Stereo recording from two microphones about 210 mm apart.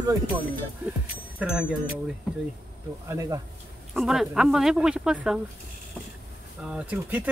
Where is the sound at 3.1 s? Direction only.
15° right (ahead or behind).